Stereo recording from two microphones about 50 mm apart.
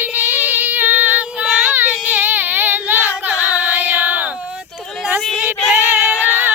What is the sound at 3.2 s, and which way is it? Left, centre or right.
Female singing, right.